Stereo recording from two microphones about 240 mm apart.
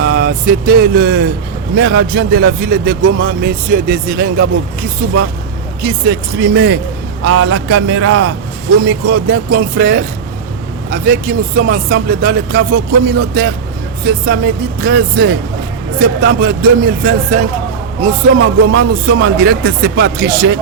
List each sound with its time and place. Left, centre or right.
0.0 s vehicle: right
1.7 s speech: right
5.8 s speech: right
7.3 s speech: right
9.0 s speech: right